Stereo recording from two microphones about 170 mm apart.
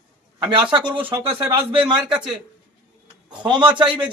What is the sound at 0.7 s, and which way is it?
Music, 30° right (ahead or behind).